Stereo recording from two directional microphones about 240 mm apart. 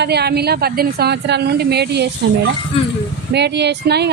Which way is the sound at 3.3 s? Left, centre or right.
Right.